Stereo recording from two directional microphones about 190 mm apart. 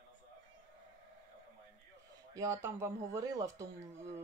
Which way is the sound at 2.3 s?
15° right (ahead or behind).